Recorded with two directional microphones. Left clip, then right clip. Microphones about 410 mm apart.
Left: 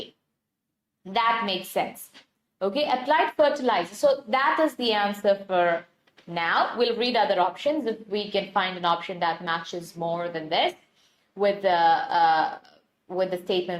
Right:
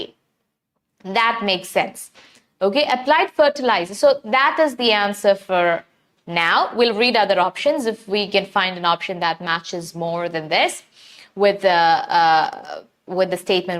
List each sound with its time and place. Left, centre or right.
1.1 s a woman's voice: right